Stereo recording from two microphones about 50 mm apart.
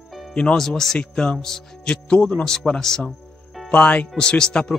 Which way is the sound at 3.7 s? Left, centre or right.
Left.